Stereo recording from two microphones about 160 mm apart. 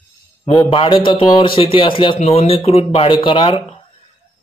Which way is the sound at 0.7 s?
30° left (ahead or behind).